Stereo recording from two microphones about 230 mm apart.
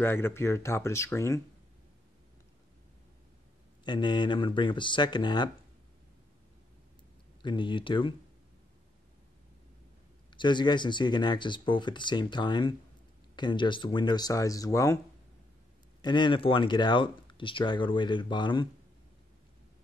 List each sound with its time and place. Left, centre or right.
0.0 s speech: centre
3.8 s speech: centre
7.4 s speech: left
10.3 s speech: centre
16.0 s speech: centre